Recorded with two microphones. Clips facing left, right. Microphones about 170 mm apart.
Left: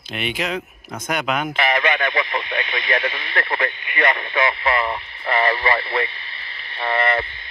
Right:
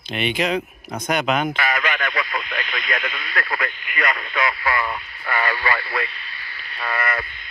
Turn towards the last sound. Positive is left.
turn(degrees=25)  # may be behind; listen again after turning